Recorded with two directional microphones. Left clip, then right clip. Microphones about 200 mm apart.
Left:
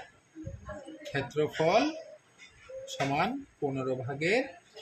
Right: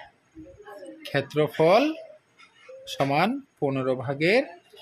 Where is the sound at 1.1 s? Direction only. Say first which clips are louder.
Right 6 dB; 55° right (ahead or behind).